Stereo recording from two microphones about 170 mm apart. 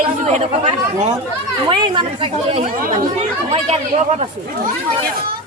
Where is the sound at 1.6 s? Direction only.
25° right (ahead or behind).